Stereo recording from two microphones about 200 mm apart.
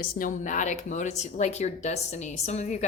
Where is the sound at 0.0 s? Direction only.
45° left (ahead or behind).